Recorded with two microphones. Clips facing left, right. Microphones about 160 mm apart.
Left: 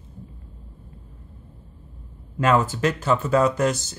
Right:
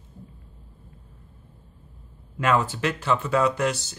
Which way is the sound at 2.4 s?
40° left (ahead or behind).